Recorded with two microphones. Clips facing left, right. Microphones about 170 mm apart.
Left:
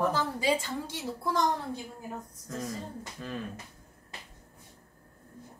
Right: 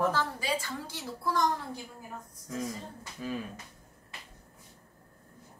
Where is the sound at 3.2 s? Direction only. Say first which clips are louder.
Right 3 dB; 5° right (ahead or behind).